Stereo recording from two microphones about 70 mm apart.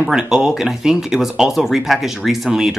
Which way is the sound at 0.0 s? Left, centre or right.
Centre.